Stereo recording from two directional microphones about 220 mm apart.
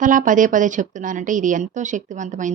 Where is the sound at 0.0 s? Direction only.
35° right (ahead or behind).